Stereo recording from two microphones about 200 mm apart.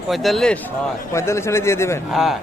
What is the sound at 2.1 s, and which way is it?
Speech, centre (ahead or behind).